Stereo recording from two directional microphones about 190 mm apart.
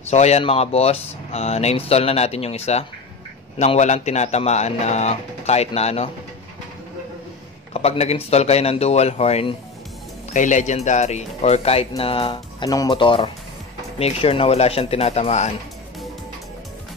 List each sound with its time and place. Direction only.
0.1 s speech: 35° left (ahead or behind)
7.7 s speech: 35° left (ahead or behind)